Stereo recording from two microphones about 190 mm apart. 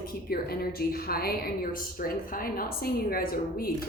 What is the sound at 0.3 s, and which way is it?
A woman's voice, 50° left (ahead or behind).